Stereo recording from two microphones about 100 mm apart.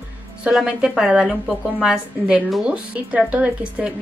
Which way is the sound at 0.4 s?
5° right (ahead or behind).